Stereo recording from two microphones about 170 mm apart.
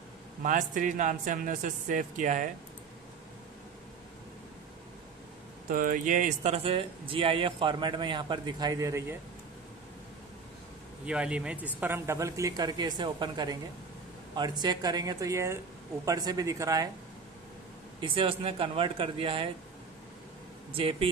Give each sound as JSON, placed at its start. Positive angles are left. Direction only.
{"t": 0.4, "sound": "speech", "side_deg": -50}
{"t": 5.7, "sound": "speech", "side_deg": -55}
{"t": 11.1, "sound": "speech", "side_deg": -5}
{"t": 18.0, "sound": "speech", "side_deg": -30}
{"t": 20.7, "sound": "speech", "side_deg": -30}